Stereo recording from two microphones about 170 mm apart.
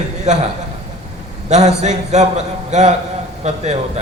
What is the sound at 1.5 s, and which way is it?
A man's voice, 45° right (ahead or behind).